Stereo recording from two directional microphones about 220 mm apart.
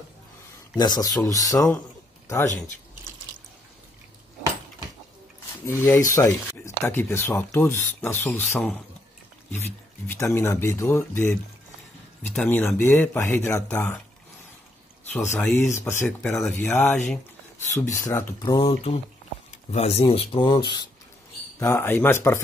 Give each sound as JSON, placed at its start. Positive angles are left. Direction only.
{"t": 0.7, "sound": "speech", "side_deg": 20}
{"t": 5.7, "sound": "speech", "side_deg": 10}
{"t": 10.0, "sound": "speech", "side_deg": 10}
{"t": 15.1, "sound": "speech", "side_deg": 5}